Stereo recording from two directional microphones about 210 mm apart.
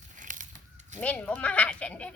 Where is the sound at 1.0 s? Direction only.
5° left (ahead or behind).